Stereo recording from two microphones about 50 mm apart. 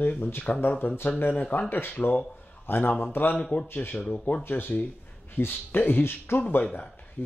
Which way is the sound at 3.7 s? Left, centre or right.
Left.